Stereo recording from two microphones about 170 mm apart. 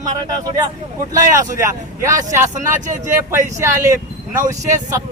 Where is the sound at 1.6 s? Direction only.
20° right (ahead or behind).